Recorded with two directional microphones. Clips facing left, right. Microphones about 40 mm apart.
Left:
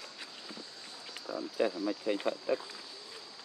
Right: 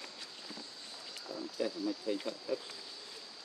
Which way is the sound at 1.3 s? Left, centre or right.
Left.